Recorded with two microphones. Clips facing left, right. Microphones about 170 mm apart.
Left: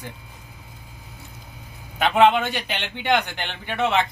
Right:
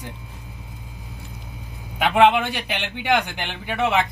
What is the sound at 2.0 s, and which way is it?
A man's voice, 5° right (ahead or behind).